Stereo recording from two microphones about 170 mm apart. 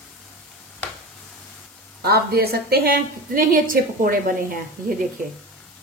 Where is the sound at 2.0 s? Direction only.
70° right (ahead or behind).